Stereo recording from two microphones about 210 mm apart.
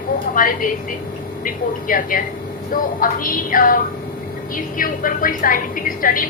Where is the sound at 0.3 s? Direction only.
40° left (ahead or behind).